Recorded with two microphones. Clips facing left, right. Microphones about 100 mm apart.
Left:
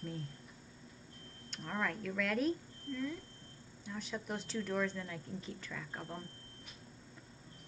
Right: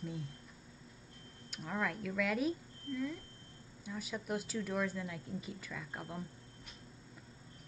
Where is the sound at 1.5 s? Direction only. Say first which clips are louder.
Even; 5° right (ahead or behind).